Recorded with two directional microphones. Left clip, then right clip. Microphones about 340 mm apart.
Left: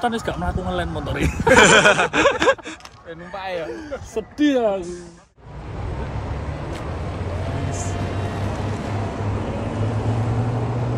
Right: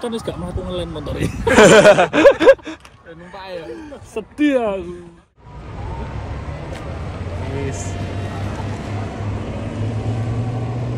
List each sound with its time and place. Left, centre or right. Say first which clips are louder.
0.0 s speech: left 2 dB; centre
0.7 s speech: right 1 dB; centre
1.0 s speech: left 2 dB; centre
4.1 s speech: right 2 dB; centre
6.5 s vehicle: even; centre